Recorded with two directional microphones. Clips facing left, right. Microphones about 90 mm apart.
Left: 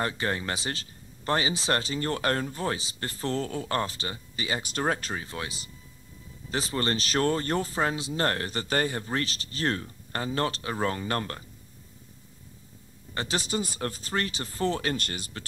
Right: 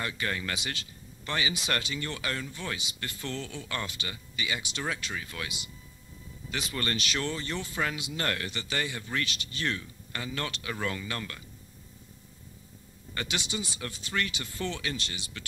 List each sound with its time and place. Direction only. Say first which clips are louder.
0.0 s speech: left 4 dB; 35° left (ahead or behind)
13.1 s speech: left 5 dB; 35° left (ahead or behind)